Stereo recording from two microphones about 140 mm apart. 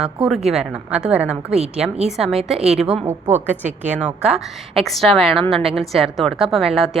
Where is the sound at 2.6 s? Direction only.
50° right (ahead or behind).